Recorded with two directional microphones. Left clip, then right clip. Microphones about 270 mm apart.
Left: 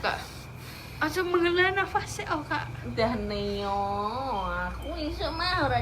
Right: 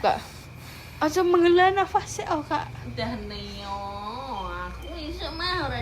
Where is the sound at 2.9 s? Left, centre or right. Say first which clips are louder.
Left 5 dB; left.